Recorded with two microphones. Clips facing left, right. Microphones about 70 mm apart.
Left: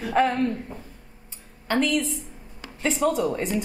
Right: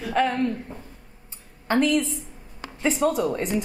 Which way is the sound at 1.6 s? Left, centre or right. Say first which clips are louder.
Right 2 dB; centre.